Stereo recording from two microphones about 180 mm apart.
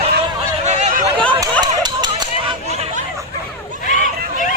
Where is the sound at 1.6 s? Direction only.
25° right (ahead or behind).